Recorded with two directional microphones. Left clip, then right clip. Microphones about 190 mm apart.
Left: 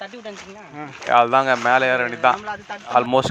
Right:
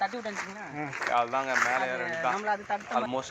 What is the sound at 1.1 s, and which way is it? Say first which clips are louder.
Speech: left 13 dB; 40° left (ahead or behind).